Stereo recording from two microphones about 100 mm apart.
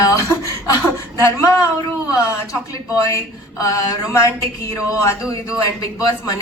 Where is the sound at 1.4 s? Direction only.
30° left (ahead or behind).